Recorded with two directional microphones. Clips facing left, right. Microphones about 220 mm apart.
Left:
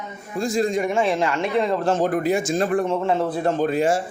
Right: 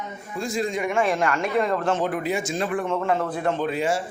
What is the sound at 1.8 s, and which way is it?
Speech, 40° left (ahead or behind).